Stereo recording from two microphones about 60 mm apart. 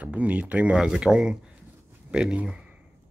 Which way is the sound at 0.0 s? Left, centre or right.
Right.